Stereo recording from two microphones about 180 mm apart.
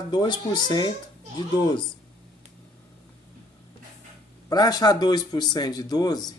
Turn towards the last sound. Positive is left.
turn(degrees=20)  # may be behind; listen again after turning